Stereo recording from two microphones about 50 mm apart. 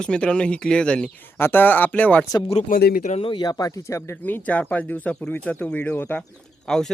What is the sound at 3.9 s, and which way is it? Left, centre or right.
Speech, left.